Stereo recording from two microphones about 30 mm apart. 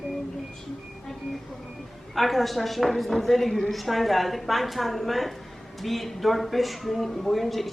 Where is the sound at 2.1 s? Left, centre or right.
Centre.